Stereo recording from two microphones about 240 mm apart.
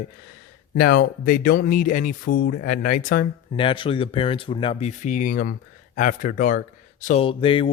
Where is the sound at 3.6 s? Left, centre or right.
Left.